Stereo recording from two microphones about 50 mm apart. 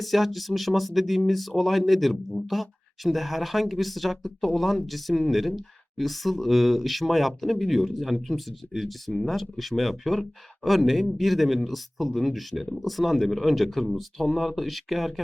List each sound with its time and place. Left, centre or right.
0.0 s speech: centre